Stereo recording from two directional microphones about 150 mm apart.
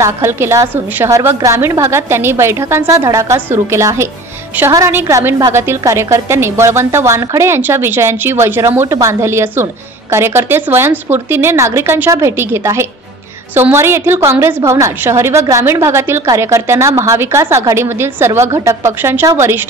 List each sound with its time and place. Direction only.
0.0 s a woman's voice: 15° right (ahead or behind)